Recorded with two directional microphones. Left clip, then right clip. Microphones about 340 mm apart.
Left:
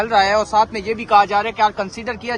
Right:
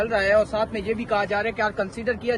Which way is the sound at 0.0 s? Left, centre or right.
Centre.